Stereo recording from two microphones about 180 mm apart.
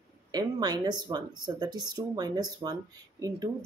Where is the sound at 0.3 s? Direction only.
20° right (ahead or behind).